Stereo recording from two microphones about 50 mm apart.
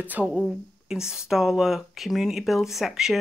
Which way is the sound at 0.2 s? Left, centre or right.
Right.